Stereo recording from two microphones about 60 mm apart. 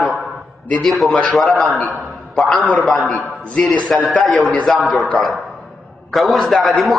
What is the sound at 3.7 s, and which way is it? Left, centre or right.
Speech, left.